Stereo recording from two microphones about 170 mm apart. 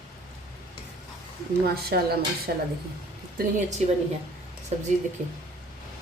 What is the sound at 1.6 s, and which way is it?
A woman's voice, 65° right (ahead or behind).